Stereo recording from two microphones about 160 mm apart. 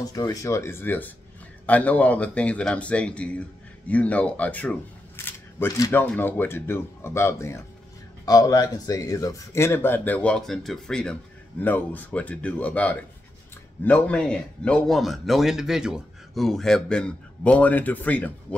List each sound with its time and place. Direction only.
0.0 s speech: 20° left (ahead or behind)